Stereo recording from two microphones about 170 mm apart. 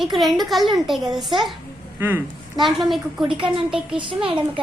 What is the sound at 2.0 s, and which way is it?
Speech, 10° right (ahead or behind).